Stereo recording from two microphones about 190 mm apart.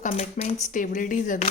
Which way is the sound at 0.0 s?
40° left (ahead or behind).